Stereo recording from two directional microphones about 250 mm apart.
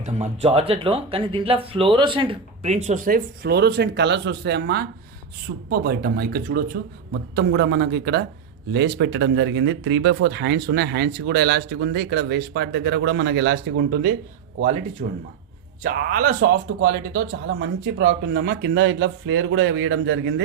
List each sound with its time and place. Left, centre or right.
0.0 s speech: right
15.0 s speech: right